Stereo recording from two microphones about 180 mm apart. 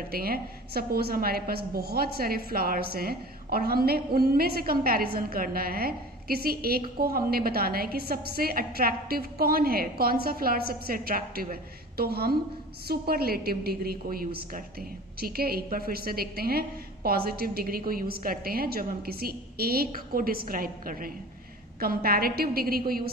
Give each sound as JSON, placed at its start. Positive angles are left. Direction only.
{"t": 0.1, "sound": "a woman's voice", "side_deg": -55}